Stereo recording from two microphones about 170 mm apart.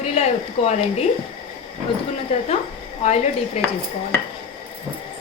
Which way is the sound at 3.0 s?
40° left (ahead or behind).